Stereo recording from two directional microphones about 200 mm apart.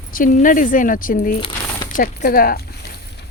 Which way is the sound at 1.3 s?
25° left (ahead or behind).